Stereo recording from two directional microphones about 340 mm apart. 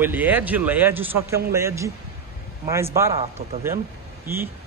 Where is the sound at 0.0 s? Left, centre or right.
Centre.